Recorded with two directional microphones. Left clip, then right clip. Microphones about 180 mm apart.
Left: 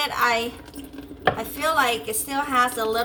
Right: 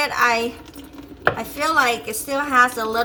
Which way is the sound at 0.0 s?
5° right (ahead or behind).